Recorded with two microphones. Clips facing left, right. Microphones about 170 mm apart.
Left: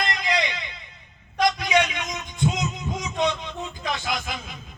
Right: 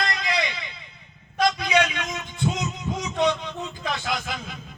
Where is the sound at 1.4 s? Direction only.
15° left (ahead or behind).